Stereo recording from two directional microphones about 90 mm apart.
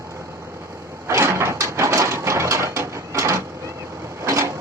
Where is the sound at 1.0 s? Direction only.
30° right (ahead or behind).